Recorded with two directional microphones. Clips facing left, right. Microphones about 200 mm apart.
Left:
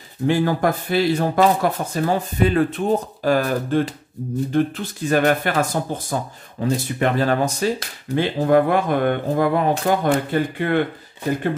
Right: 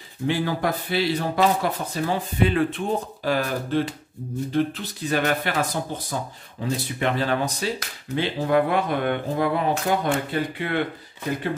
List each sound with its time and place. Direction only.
0.3 s speech: 50° left (ahead or behind)